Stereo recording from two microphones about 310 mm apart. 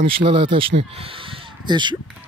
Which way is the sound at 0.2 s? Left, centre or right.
Centre.